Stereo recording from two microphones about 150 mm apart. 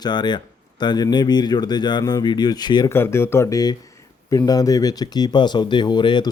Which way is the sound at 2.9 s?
15° left (ahead or behind).